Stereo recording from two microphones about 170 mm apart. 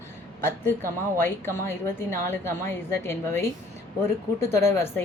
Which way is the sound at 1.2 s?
15° left (ahead or behind).